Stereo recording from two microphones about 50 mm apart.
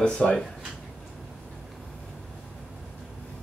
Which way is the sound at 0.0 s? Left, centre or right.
Centre.